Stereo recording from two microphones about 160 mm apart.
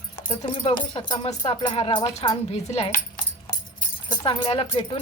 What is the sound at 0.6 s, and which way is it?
Speech, 35° left (ahead or behind).